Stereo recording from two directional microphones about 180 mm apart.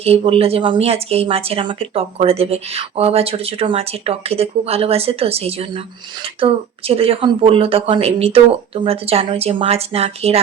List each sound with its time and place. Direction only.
0.0 s speech: 35° right (ahead or behind)